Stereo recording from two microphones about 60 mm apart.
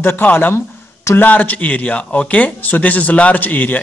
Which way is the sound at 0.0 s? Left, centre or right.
Left.